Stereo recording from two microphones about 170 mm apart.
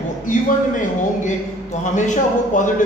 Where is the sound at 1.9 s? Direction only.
45° left (ahead or behind).